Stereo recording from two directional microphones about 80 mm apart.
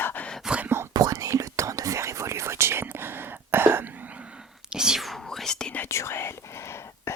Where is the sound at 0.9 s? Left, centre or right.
Right; by 5.7 s centre.